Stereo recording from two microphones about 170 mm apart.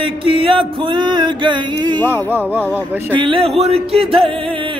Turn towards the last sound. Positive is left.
turn(degrees=-30)  # may be behind; listen again after turning